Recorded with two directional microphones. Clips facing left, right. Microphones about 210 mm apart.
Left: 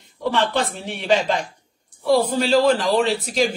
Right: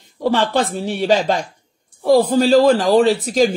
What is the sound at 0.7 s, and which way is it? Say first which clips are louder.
Speech: right 4 dB; 40° right (ahead or behind).